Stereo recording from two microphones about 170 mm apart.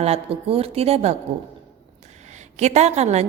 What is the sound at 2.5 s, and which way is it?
Speech, 40° right (ahead or behind).